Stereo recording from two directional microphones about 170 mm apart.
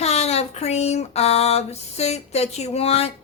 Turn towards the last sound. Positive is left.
turn(degrees=35)  # may be behind; listen again after turning